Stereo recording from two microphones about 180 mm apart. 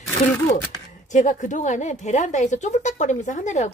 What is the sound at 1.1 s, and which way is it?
Speech, 45° left (ahead or behind).